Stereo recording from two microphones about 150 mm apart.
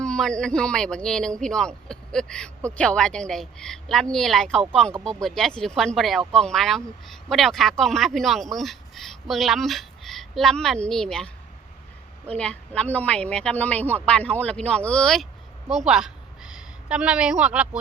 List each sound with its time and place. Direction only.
0.0 s speech: 5° left (ahead or behind)
12.3 s speech: 10° left (ahead or behind)
15.9 s a sound: 5° right (ahead or behind)